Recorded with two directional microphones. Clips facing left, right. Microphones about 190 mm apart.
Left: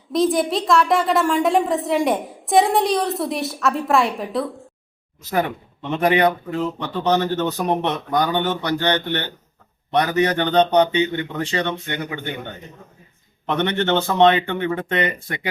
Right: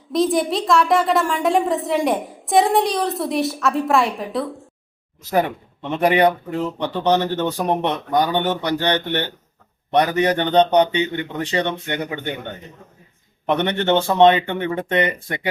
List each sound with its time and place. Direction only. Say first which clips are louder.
0.1 s a woman's voice: even; centre (ahead or behind)
5.4 s a man's voice: right 1 dB; 15° right (ahead or behind)
13.5 s speech: right 2 dB; 15° right (ahead or behind)